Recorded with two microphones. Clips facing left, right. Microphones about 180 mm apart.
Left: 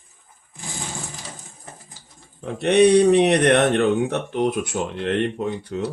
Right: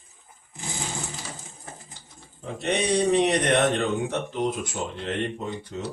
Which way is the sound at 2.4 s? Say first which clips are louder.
Left 11 dB; 65° left (ahead or behind).